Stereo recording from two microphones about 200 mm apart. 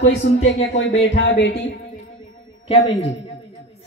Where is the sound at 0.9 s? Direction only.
65° left (ahead or behind).